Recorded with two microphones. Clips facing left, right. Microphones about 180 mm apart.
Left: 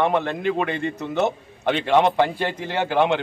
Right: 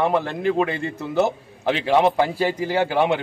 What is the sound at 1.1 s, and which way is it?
A man's voice, 5° right (ahead or behind).